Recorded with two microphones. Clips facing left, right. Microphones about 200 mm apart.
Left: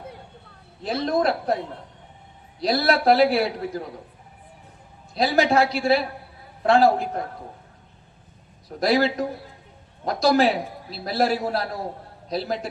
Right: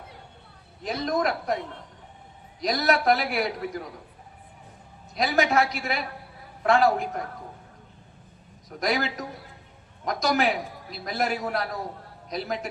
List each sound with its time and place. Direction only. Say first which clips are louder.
0.8 s a man's voice: left 3 dB; 30° left (ahead or behind)
2.6 s a man's voice: left 3 dB; 30° left (ahead or behind)
5.1 s a man's voice: left 3 dB; 30° left (ahead or behind)
8.8 s a man's voice: left 7 dB; 30° left (ahead or behind)